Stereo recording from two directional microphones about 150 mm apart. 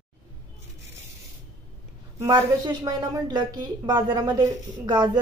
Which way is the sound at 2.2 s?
25° right (ahead or behind).